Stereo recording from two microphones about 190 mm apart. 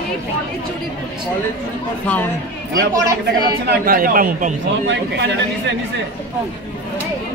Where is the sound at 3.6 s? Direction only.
50° right (ahead or behind).